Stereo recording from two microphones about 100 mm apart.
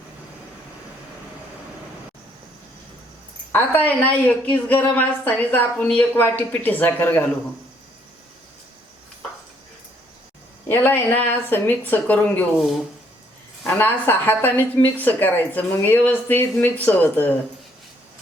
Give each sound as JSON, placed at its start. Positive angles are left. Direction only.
{"t": 3.5, "sound": "a woman's voice", "side_deg": 15}
{"t": 10.7, "sound": "speech", "side_deg": 20}
{"t": 13.7, "sound": "a woman's voice", "side_deg": 20}